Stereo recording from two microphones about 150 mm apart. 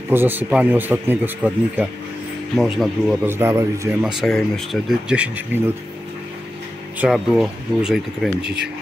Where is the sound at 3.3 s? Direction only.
15° right (ahead or behind).